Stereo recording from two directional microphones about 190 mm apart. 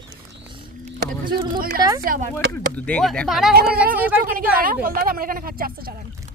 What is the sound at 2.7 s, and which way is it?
Speech, 5° left (ahead or behind).